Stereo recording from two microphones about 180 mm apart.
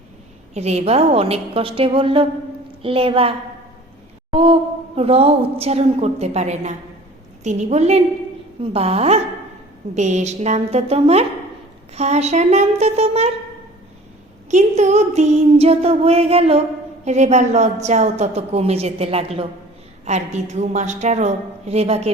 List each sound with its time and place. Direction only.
0.5 s a woman's voice: 35° right (ahead or behind)
4.3 s a sound: 30° right (ahead or behind)
4.9 s a woman's voice: 35° right (ahead or behind)
14.5 s a woman's voice: 40° right (ahead or behind)